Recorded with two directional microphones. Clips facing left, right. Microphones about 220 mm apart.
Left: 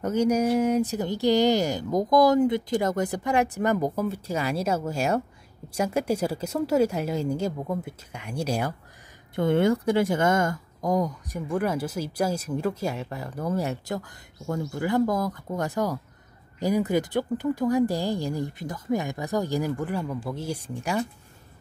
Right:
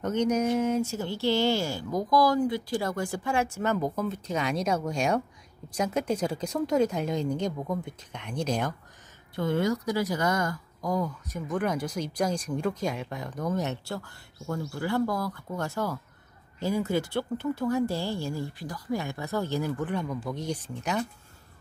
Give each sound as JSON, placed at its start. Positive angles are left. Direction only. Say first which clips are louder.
{"t": 0.0, "sound": "speech", "louder": "left 3 dB", "side_deg": 10}
{"t": 9.3, "sound": "speech", "louder": "left 5 dB", "side_deg": 25}